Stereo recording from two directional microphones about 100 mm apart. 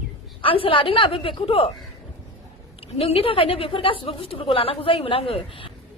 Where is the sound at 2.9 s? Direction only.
75° left (ahead or behind).